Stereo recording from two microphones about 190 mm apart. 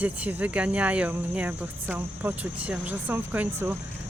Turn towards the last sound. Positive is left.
turn(degrees=-10)  # may be behind; listen again after turning